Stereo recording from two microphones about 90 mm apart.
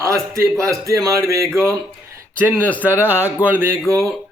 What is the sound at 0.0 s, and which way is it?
A man's voice, 35° right (ahead or behind).